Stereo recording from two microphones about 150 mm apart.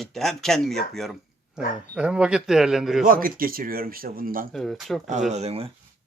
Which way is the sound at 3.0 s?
70° right (ahead or behind).